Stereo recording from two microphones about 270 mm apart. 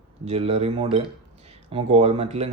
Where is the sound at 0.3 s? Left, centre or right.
Right.